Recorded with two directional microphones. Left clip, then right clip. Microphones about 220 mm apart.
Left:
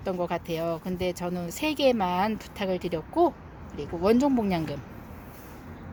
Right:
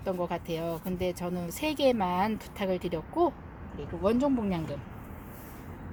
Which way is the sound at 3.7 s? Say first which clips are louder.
Left 5 dB; 35° left (ahead or behind).